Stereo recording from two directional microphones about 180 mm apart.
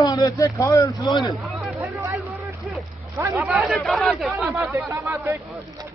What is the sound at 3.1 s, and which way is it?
Speech, 15° right (ahead or behind).